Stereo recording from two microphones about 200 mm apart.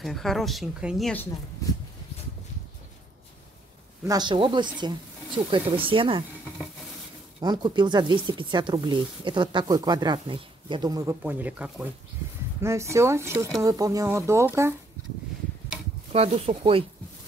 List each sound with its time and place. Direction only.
0.0 s speech: centre (ahead or behind)
4.0 s speech: 20° right (ahead or behind)
7.3 s speech: 20° right (ahead or behind)
16.1 s speech: 30° right (ahead or behind)